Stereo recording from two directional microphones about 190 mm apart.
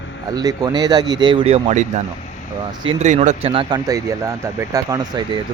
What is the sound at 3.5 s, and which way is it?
Speech, 20° right (ahead or behind).